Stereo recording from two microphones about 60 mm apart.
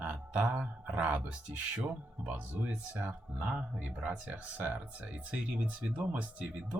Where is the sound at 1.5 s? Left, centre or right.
Right.